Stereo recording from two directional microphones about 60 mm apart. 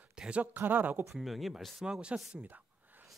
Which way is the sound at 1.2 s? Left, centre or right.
Centre.